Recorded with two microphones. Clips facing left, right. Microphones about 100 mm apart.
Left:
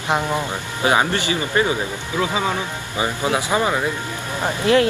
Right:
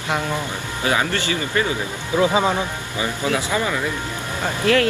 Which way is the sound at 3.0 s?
25° left (ahead or behind).